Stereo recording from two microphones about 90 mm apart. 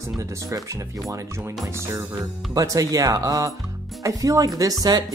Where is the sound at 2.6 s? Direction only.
40° right (ahead or behind).